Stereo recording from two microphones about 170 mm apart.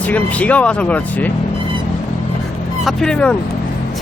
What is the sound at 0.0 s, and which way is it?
Speech, 10° left (ahead or behind).